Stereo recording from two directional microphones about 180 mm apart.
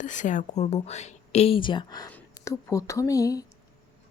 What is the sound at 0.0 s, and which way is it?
A woman's voice, 45° left (ahead or behind).